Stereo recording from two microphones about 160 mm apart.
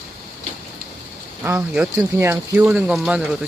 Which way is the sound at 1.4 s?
5° right (ahead or behind).